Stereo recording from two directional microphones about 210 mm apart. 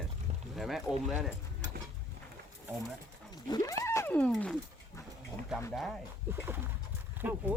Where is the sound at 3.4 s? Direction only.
20° left (ahead or behind).